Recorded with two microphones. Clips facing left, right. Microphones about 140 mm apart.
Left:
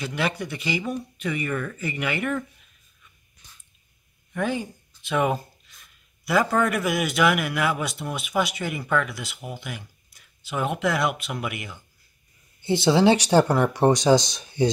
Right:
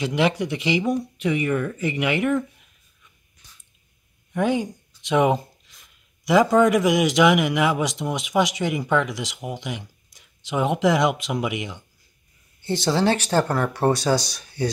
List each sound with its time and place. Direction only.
0.0 s speech: 15° right (ahead or behind)
4.3 s speech: 15° right (ahead or behind)
11.1 s speech: 90° right
11.3 s speech: 20° right (ahead or behind)
12.6 s speech: 10° left (ahead or behind)